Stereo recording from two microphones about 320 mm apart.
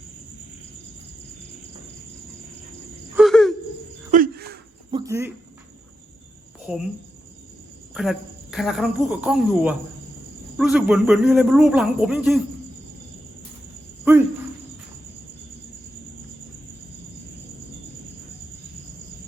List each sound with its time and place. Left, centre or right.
3.2 s hoot: centre
4.1 s a sound: right
4.9 s cricket: centre
6.7 s speech: centre
7.9 s speech: centre